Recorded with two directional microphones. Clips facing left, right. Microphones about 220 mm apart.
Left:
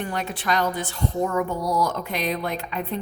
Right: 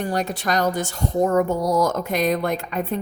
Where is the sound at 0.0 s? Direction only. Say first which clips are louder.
Right 4 dB; 40° right (ahead or behind).